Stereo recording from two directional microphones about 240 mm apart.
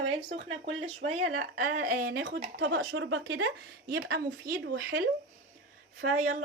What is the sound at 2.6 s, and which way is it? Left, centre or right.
Speech, right.